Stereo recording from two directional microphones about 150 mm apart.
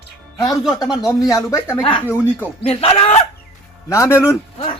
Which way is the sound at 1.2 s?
20° left (ahead or behind).